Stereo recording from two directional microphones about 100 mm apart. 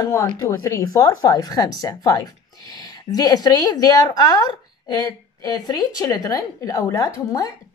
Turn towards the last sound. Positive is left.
turn(degrees=35)  # may be behind; listen again after turning